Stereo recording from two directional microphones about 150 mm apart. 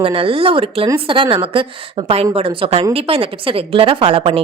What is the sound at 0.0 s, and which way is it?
A woman's voice, 35° right (ahead or behind).